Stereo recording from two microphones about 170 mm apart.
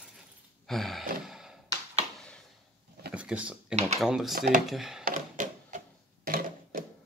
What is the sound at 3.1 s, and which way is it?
Speech, 5° right (ahead or behind).